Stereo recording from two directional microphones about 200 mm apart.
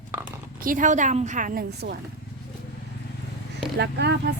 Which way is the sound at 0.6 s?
40° right (ahead or behind).